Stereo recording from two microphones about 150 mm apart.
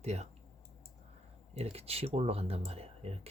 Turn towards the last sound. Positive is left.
turn(degrees=-40)  # may be behind; listen again after turning